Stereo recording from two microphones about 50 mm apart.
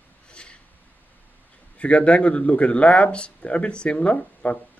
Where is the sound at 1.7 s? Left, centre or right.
Left.